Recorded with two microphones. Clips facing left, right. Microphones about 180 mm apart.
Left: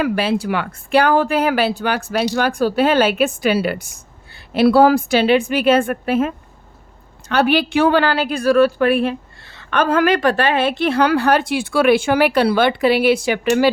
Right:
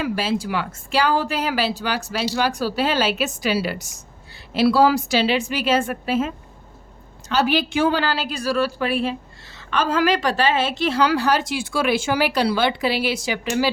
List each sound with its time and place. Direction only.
0.0 s speech: 60° left (ahead or behind)